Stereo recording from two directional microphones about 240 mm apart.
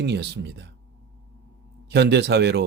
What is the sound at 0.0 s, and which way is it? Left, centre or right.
Speech, right.